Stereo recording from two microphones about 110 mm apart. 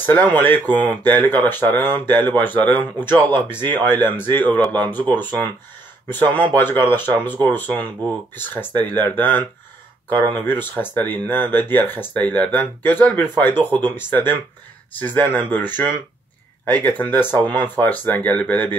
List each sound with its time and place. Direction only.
0.0 s speech: 20° left (ahead or behind)
8.4 s speech: 15° left (ahead or behind)
15.0 s speech: 15° left (ahead or behind)